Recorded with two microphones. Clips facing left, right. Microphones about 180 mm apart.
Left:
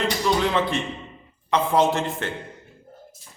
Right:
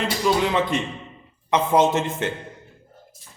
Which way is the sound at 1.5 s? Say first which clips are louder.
Right 1 dB; 20° right (ahead or behind).